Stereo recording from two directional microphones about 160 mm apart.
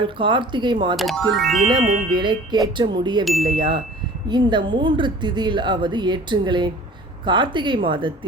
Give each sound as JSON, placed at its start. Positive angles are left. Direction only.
{"t": 0.0, "sound": "a woman's voice", "side_deg": -30}
{"t": 1.4, "sound": "speech", "side_deg": 0}
{"t": 1.6, "sound": "a woman's voice", "side_deg": -30}